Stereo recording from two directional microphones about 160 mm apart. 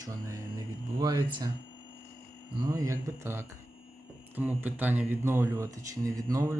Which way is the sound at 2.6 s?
20° right (ahead or behind).